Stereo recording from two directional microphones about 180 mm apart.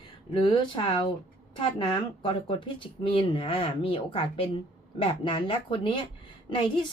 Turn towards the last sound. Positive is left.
turn(degrees=25)  # may be behind; listen again after turning